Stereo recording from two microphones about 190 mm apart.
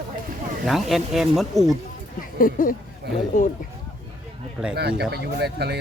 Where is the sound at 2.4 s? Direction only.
45° left (ahead or behind).